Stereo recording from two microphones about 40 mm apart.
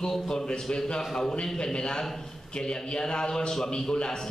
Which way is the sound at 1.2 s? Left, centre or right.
Centre.